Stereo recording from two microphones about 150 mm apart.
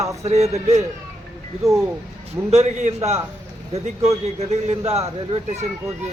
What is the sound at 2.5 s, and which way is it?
Speech, 45° right (ahead or behind).